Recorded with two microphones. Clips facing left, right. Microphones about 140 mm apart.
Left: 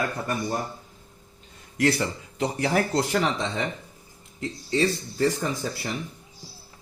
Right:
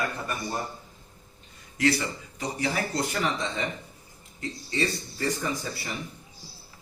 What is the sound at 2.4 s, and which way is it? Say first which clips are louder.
Speech: left 6 dB; 55° left (ahead or behind).